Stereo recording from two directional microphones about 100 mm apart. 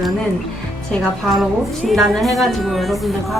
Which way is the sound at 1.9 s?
Centre (ahead or behind).